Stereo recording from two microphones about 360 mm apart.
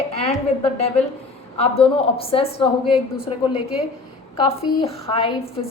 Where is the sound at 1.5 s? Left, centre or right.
Centre.